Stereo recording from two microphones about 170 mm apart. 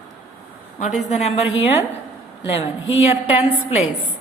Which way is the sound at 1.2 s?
40° left (ahead or behind).